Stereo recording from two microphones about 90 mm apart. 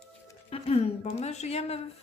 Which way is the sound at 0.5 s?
90° left.